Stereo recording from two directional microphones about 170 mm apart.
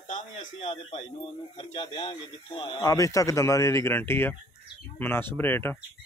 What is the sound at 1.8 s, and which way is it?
A man's voice, 30° left (ahead or behind).